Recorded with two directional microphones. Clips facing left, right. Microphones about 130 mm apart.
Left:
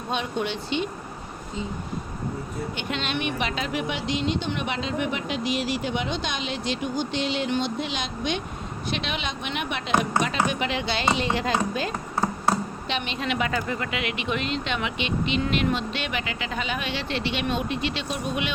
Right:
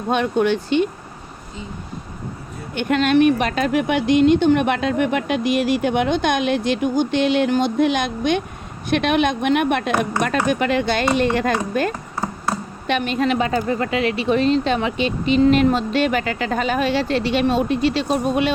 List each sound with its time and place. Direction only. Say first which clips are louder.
0.1 s speech: right 10 dB; 50° right (ahead or behind)
2.7 s speech: right 16 dB; 50° right (ahead or behind)
13.0 s speech: right 8 dB; 45° right (ahead or behind)